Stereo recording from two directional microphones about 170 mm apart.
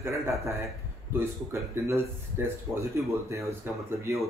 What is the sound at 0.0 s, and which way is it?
Speech, 15° right (ahead or behind).